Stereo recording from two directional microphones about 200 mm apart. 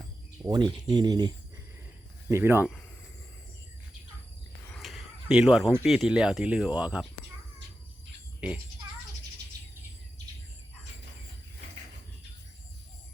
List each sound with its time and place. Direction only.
0.4 s speech: 20° right (ahead or behind)
2.3 s speech: 10° right (ahead or behind)
4.7 s a sound: centre (ahead or behind)
5.8 s speech: centre (ahead or behind)
8.4 s speech: 5° right (ahead or behind)